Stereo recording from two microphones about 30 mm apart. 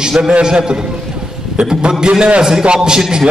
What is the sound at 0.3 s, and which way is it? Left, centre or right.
A man's voice, right.